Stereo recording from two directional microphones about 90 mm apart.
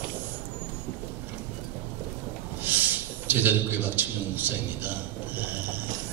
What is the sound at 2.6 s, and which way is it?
A man's voice, 20° right (ahead or behind).